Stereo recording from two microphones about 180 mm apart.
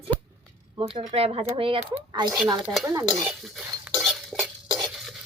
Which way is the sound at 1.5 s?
30° right (ahead or behind).